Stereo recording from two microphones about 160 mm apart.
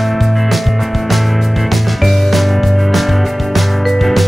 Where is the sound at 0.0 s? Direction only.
Centre (ahead or behind).